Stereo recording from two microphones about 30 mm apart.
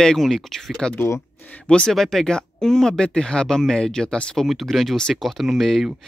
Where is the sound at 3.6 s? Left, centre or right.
Centre.